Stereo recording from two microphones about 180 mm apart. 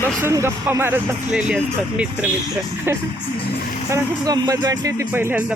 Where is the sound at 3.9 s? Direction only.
20° right (ahead or behind).